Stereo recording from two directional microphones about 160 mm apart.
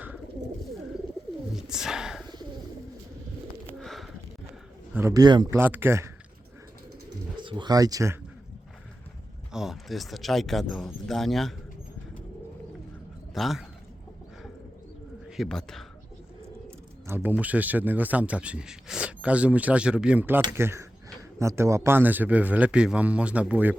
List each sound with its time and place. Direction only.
1.5 s bird: 5° right (ahead or behind)
3.7 s bird: centre (ahead or behind)
4.9 s speech: 20° right (ahead or behind)
5.5 s a man's voice: 10° right (ahead or behind)
7.3 s speech: 30° right (ahead or behind)
9.5 s speech: 5° right (ahead or behind)
13.3 s speech: centre (ahead or behind)
15.3 s a man's voice: centre (ahead or behind)
17.1 s a man's voice: 15° right (ahead or behind)